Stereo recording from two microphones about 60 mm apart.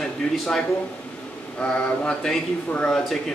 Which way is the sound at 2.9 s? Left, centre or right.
Centre.